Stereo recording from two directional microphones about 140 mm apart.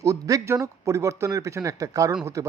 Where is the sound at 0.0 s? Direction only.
25° right (ahead or behind).